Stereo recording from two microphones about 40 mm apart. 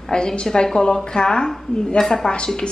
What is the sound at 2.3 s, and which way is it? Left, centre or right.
Speech, left.